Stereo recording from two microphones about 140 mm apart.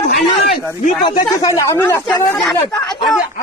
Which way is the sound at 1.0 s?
35° left (ahead or behind).